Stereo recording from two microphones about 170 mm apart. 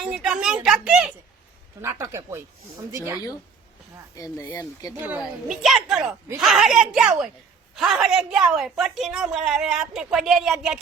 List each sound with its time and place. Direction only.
0.0 s speech: 5° right (ahead or behind)
1.8 s speech: 15° right (ahead or behind)
4.1 s speech: 20° left (ahead or behind)
4.9 s a woman's voice: 10° right (ahead or behind)